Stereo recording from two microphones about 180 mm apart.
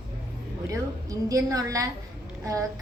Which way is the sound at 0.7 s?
20° right (ahead or behind).